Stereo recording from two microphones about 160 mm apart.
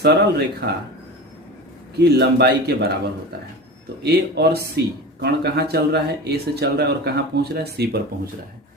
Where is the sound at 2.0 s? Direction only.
90° right.